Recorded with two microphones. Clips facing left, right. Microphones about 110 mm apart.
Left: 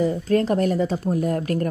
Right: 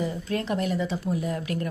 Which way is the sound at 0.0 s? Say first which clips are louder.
Left 9 dB; 40° left (ahead or behind).